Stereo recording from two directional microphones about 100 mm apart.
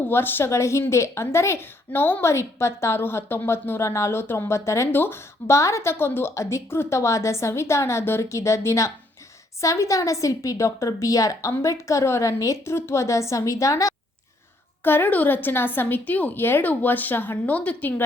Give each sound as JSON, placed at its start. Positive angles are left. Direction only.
{"t": 0.0, "sound": "a woman's voice", "side_deg": 20}
{"t": 14.8, "sound": "a woman's voice", "side_deg": 20}